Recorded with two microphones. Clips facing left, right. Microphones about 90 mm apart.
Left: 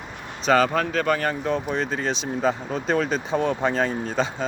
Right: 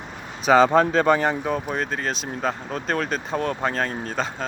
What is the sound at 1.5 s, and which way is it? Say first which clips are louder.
Speech: left 1 dB; 5° right (ahead or behind).